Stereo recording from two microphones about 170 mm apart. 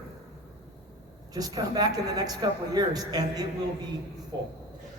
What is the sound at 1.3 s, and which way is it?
A man's voice, 20° right (ahead or behind).